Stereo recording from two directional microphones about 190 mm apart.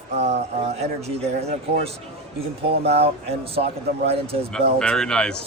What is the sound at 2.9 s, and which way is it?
Speech, 35° right (ahead or behind).